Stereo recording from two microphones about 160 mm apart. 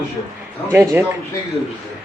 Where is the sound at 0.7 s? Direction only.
15° right (ahead or behind).